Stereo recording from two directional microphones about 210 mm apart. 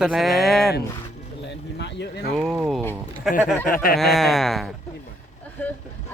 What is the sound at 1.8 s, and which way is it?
Speech, 55° left (ahead or behind).